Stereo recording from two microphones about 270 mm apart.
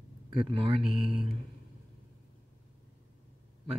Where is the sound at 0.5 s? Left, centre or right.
Centre.